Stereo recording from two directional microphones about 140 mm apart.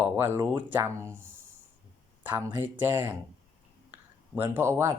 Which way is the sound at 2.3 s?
15° right (ahead or behind).